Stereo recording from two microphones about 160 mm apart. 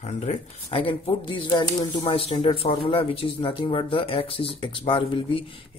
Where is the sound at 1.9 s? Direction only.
40° left (ahead or behind).